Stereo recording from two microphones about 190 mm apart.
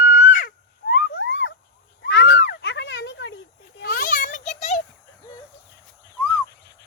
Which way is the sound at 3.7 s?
50° left (ahead or behind).